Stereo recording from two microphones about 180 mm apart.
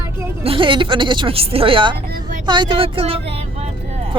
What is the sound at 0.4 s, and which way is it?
Speech, 30° right (ahead or behind).